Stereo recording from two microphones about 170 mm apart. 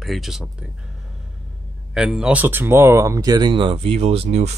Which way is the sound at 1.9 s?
5° right (ahead or behind).